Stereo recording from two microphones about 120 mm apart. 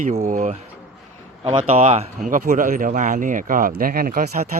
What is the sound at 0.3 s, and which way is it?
Speech, 90° right.